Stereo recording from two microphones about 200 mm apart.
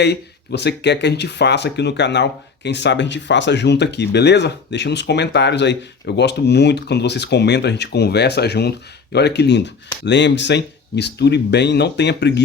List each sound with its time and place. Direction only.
0.0 s speech: 55° left (ahead or behind)